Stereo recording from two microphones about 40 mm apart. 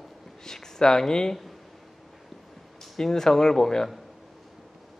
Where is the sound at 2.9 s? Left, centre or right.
Centre.